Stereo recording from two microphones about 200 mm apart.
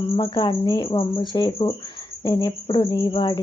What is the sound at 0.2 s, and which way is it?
Speech, 25° left (ahead or behind).